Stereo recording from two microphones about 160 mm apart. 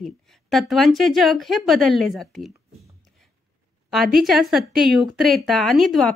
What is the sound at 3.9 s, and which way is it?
A woman's voice, centre (ahead or behind).